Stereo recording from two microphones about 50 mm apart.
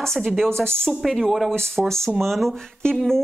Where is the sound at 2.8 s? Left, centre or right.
Centre.